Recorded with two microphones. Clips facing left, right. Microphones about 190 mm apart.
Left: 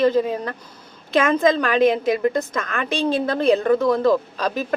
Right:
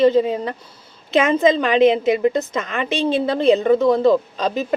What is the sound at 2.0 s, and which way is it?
A woman's voice, 5° right (ahead or behind).